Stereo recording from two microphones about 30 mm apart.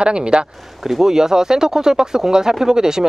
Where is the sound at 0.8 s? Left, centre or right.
Centre.